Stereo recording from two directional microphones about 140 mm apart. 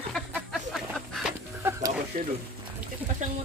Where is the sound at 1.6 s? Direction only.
20° right (ahead or behind).